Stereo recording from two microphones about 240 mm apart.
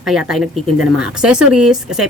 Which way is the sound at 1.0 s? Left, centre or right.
Centre.